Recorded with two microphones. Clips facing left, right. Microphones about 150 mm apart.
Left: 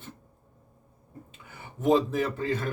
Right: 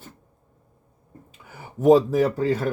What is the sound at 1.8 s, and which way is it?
Speech, 40° right (ahead or behind).